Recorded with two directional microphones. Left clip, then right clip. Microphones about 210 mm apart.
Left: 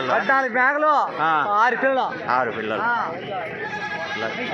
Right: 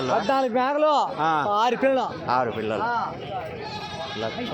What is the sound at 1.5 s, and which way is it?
Speech, 60° right (ahead or behind).